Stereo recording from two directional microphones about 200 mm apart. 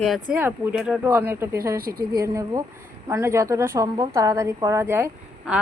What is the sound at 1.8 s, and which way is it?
Speech, 50° right (ahead or behind).